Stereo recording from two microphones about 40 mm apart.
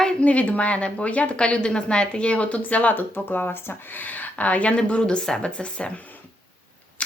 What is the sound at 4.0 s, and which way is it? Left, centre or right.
Speech, left.